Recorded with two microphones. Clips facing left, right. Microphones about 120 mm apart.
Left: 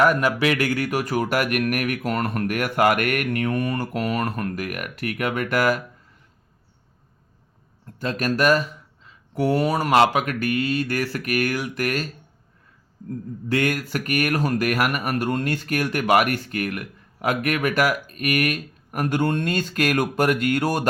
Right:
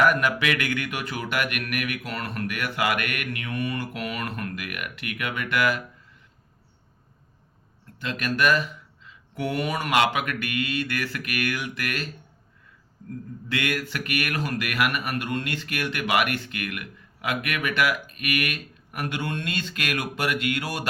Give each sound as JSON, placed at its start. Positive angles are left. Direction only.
{"t": 0.0, "sound": "speech", "side_deg": 30}
{"t": 7.9, "sound": "speech", "side_deg": 40}
{"t": 13.5, "sound": "speech", "side_deg": 40}